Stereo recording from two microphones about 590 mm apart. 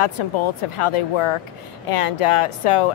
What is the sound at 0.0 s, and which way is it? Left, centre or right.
Speech, left.